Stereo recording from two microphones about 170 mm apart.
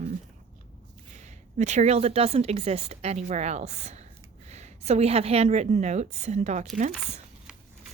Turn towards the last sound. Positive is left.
turn(degrees=-50)  # may be behind; listen again after turning